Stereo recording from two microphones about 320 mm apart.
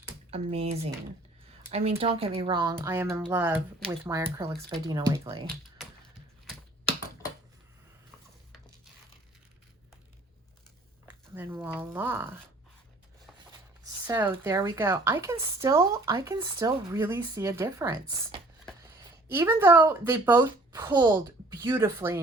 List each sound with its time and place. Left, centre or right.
0.3 s speech: centre
11.1 s speech: centre
14.1 s speech: centre